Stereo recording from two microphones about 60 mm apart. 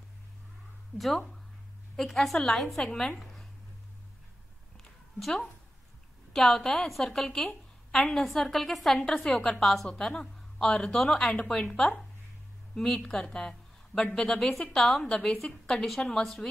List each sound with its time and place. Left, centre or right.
0.9 s a woman's voice: centre
5.2 s a woman's voice: centre
15.0 s a woman's voice: centre